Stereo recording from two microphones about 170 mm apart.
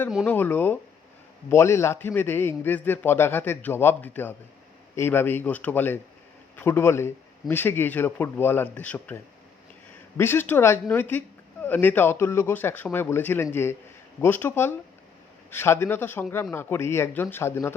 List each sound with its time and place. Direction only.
0.3 s a man's voice: 10° left (ahead or behind)
10.2 s a man's voice: 15° left (ahead or behind)